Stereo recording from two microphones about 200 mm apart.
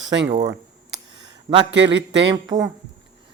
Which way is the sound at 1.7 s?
65° right (ahead or behind).